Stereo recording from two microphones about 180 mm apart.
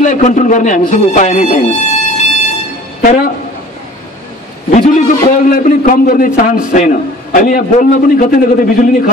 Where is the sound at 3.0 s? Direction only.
55° left (ahead or behind).